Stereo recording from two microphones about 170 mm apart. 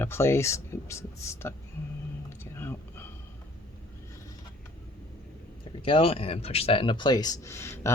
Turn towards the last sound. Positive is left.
turn(degrees=15)  # may be behind; listen again after turning